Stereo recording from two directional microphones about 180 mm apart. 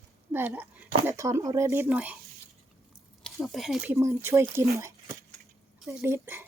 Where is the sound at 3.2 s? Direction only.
Centre (ahead or behind).